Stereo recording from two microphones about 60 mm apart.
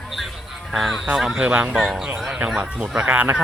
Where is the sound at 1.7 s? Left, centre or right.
Centre.